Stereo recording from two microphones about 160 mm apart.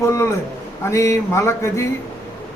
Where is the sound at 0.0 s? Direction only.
20° left (ahead or behind).